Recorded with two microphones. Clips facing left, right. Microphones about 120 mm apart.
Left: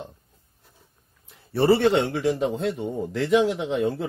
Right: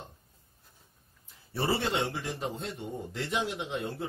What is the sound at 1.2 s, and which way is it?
A man's voice, 65° left (ahead or behind).